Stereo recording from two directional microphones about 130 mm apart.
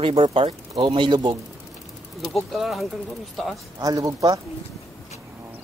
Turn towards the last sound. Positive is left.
turn(degrees=-25)  # may be behind; listen again after turning